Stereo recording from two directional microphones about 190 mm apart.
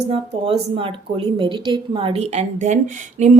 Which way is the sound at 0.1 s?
30° right (ahead or behind).